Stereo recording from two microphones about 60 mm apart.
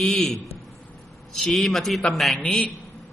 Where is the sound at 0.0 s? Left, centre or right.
Centre.